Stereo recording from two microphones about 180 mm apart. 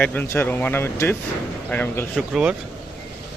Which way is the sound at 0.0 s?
10° left (ahead or behind).